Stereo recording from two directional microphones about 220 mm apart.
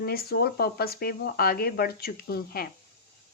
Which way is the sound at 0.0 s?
45° left (ahead or behind).